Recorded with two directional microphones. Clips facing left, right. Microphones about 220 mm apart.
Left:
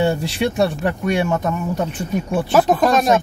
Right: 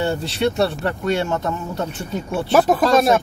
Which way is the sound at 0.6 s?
15° left (ahead or behind).